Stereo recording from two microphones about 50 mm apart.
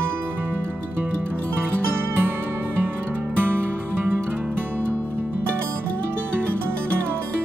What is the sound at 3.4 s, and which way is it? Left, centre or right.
Music, right.